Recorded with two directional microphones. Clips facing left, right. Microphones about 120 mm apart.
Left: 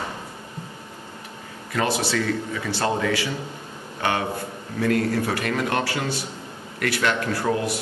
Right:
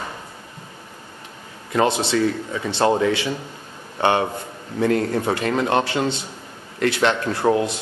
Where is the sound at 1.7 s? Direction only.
20° right (ahead or behind).